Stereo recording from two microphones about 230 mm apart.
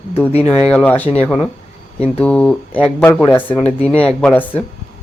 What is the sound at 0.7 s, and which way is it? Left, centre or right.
Speech, centre.